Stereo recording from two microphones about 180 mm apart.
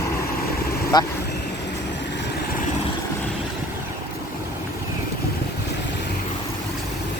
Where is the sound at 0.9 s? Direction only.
20° left (ahead or behind).